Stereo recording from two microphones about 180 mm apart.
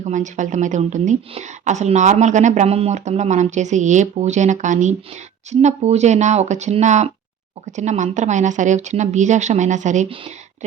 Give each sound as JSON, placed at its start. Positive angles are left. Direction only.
{"t": 0.0, "sound": "a woman's voice", "side_deg": -45}